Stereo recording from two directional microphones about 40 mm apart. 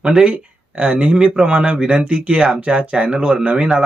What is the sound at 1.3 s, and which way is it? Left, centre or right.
Speech, centre.